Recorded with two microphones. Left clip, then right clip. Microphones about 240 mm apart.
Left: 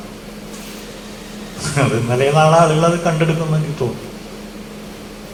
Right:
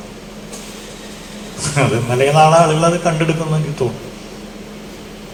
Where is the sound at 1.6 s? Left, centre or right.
Right.